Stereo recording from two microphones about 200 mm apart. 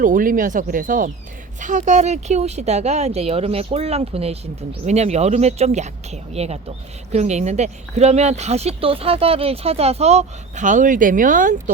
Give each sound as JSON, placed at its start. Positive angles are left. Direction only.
{"t": 0.0, "sound": "speech", "side_deg": -40}